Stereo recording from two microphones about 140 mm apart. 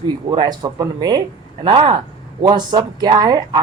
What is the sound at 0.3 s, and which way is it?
Speech, 30° right (ahead or behind).